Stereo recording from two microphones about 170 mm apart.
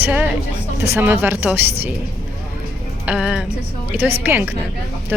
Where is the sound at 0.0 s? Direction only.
10° right (ahead or behind).